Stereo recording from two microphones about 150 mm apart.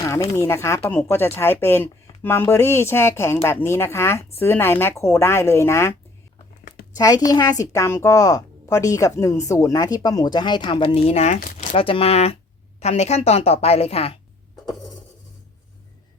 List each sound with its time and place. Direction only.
0.1 s a woman's voice: 20° left (ahead or behind); by 14.1 s 40° left (ahead or behind)